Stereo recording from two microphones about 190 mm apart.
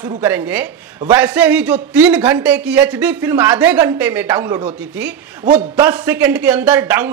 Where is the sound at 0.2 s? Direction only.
10° right (ahead or behind).